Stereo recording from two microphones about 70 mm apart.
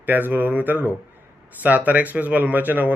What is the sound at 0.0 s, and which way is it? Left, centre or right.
Speech, right.